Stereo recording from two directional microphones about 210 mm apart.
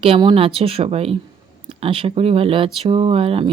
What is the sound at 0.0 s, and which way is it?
Speech, 25° right (ahead or behind).